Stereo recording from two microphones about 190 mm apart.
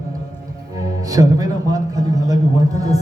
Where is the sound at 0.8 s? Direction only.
20° right (ahead or behind).